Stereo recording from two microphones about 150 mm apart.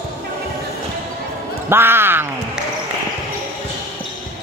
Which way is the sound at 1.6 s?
15° right (ahead or behind).